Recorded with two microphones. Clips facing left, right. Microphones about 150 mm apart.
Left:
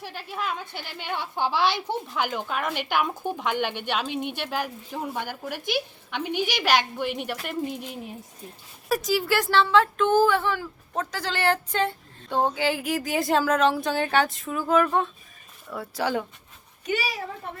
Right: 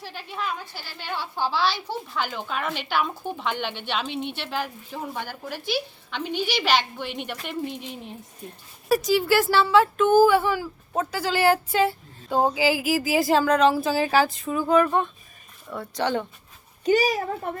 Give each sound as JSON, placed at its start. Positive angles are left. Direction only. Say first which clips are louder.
{"t": 0.0, "sound": "speech", "louder": "even", "side_deg": 5}
{"t": 0.8, "sound": "speech", "louder": "left 1 dB", "side_deg": 15}
{"t": 16.8, "sound": "a woman's voice", "louder": "right 8 dB", "side_deg": -40}